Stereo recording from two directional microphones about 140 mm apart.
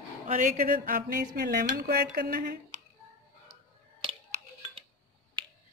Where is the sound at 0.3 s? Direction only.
65° right (ahead or behind); by 2.8 s 90° right.